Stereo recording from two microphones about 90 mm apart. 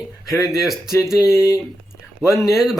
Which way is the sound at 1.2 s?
35° left (ahead or behind).